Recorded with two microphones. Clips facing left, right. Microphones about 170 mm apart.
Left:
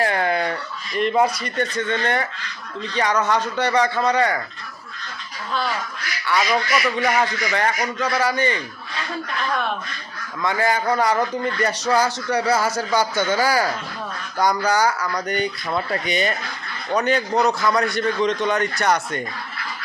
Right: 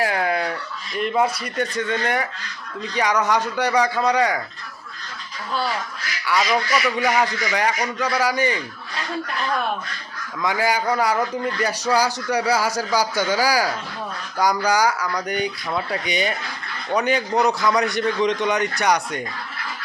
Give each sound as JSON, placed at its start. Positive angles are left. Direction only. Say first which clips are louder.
{"t": 0.0, "sound": "a sound", "louder": "left 1 dB", "side_deg": -5}
{"t": 0.9, "sound": "speech", "louder": "left 2 dB", "side_deg": 0}
{"t": 6.2, "sound": "speech", "louder": "even", "side_deg": -5}
{"t": 6.9, "sound": "speech", "louder": "even", "side_deg": -10}
{"t": 10.4, "sound": "speech", "louder": "even", "side_deg": -10}